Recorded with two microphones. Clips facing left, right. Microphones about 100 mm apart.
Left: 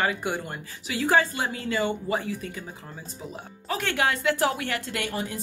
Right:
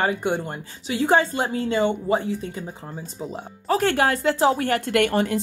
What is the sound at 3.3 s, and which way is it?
Speech, 40° right (ahead or behind).